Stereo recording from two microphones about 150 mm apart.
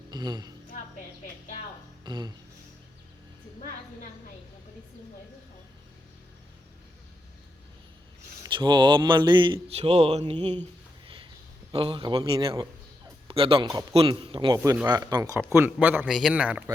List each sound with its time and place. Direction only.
0.1 s speech: 30° right (ahead or behind)
2.0 s speech: 30° right (ahead or behind)
8.5 s speech: 30° right (ahead or behind)
11.0 s a sound: 35° right (ahead or behind)
11.7 s a man's voice: 35° right (ahead or behind); by 16.0 s 10° right (ahead or behind)
16.0 s speech: centre (ahead or behind)